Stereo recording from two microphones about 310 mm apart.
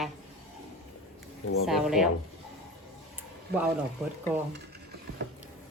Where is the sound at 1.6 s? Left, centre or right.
Centre.